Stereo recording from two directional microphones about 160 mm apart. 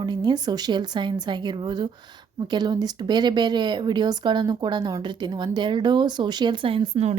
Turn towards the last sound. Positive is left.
turn(degrees=-40)  # may be behind; listen again after turning